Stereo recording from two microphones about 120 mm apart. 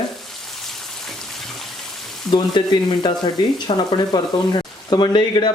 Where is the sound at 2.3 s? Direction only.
40° left (ahead or behind).